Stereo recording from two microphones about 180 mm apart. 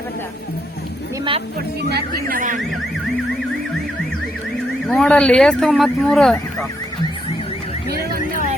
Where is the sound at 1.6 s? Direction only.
65° right (ahead or behind).